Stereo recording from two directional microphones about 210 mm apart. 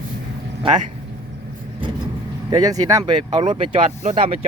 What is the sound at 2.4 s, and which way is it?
Speech, 20° right (ahead or behind).